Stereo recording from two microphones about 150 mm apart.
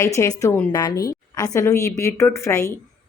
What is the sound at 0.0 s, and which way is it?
A woman's voice, 20° left (ahead or behind).